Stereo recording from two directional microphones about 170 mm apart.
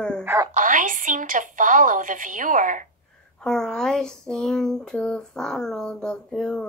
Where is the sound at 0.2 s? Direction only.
15° right (ahead or behind).